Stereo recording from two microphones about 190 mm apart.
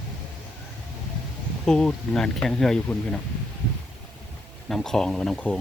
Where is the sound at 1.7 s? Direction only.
5° left (ahead or behind).